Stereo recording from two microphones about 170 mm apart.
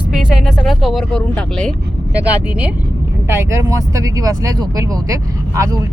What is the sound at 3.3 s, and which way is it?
Speech, 15° right (ahead or behind).